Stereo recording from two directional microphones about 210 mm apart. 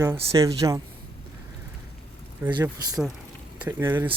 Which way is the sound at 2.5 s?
20° right (ahead or behind).